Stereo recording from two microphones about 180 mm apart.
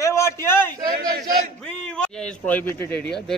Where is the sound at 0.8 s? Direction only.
50° right (ahead or behind).